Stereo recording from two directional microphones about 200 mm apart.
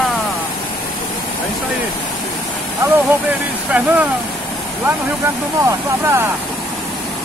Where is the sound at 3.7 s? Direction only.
5° right (ahead or behind).